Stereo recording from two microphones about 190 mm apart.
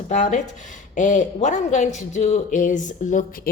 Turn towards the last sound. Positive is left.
turn(degrees=40)  # may be behind; listen again after turning